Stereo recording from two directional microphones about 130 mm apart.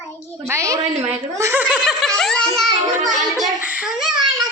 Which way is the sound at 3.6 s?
10° right (ahead or behind).